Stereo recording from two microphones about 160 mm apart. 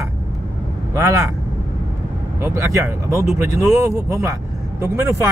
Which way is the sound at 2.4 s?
20° right (ahead or behind).